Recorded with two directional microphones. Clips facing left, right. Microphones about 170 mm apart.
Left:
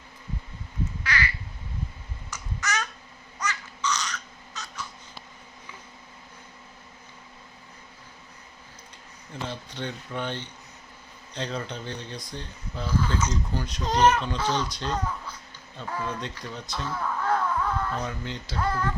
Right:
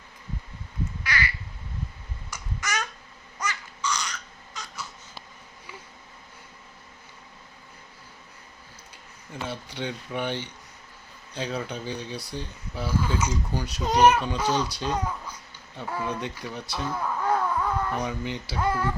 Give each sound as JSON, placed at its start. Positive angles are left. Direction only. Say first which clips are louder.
{"t": 1.0, "sound": "quack", "louder": "even", "side_deg": -10}
{"t": 2.3, "sound": "babbling", "louder": "left 1 dB", "side_deg": -10}
{"t": 3.4, "sound": "a sound", "louder": "left 1 dB", "side_deg": -10}
{"t": 9.3, "sound": "speech", "louder": "right 1 dB", "side_deg": -10}